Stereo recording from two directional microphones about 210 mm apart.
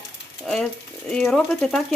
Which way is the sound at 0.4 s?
5° left (ahead or behind).